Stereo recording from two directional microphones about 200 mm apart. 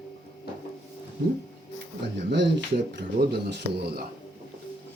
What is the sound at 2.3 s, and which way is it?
Speech, 60° right (ahead or behind).